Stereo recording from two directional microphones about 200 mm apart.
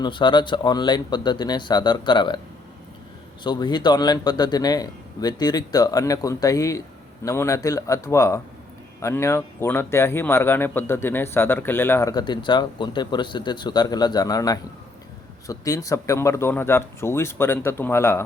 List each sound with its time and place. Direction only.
0.0 s speech: 25° left (ahead or behind)
3.4 s speech: 20° left (ahead or behind)